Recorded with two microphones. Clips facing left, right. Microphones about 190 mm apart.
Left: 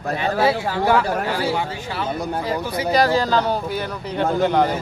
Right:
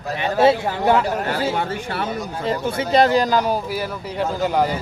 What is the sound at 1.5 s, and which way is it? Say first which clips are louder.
Speech: right 1 dB; 55° right (ahead or behind).